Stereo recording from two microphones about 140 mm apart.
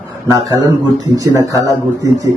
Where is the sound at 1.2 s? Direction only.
25° right (ahead or behind).